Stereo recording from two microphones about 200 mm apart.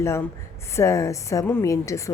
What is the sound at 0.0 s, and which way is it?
A woman's voice, 15° left (ahead or behind).